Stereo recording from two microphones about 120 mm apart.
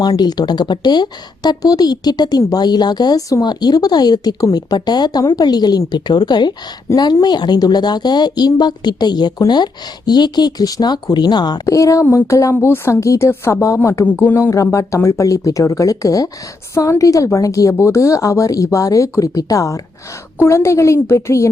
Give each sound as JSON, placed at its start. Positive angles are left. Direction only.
{"t": 0.0, "sound": "speech", "side_deg": 35}
{"t": 11.6, "sound": "speech", "side_deg": 25}